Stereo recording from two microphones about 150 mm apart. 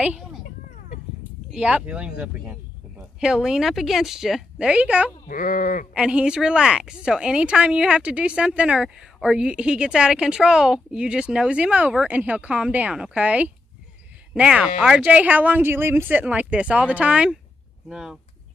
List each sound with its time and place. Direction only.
0.0 s speech: 10° right (ahead or behind)
1.5 s speech: 5° right (ahead or behind)
5.3 s speech: 60° left (ahead or behind)
5.9 s speech: 5° right (ahead or behind)